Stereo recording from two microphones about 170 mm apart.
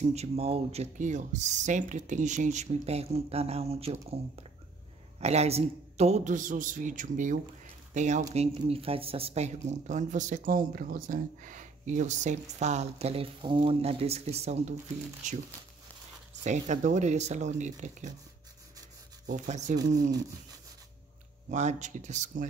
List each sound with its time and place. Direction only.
0.0 s speech: 40° right (ahead or behind)
16.4 s speech: 45° right (ahead or behind)
19.2 s speech: 45° right (ahead or behind)
21.5 s speech: 45° right (ahead or behind)